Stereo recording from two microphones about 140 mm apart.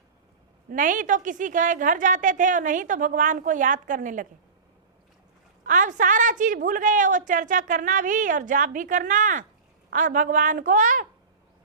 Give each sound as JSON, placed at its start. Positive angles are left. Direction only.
{"t": 0.7, "sound": "a woman's voice", "side_deg": -70}
{"t": 5.6, "sound": "a woman's voice", "side_deg": -65}